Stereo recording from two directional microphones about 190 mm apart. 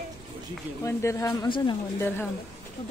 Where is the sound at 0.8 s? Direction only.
15° left (ahead or behind).